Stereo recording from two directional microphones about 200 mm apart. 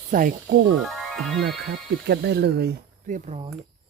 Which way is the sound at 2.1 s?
55° right (ahead or behind).